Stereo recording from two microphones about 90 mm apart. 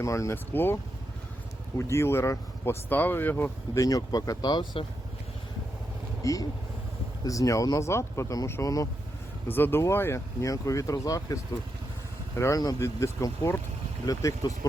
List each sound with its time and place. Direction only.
0.0 s speech: 35° left (ahead or behind)
0.5 s speech: 25° left (ahead or behind)
1.8 s speech: 30° left (ahead or behind)
3.8 s speech: 40° left (ahead or behind)
6.2 s speech: 40° left (ahead or behind)
9.5 s speech: 25° left (ahead or behind); by 11.3 s 40° left (ahead or behind)
12.4 s speech: 40° left (ahead or behind)